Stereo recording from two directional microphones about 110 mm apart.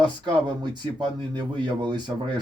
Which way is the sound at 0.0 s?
45° right (ahead or behind).